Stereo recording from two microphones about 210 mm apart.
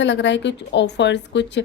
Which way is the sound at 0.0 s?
60° left (ahead or behind).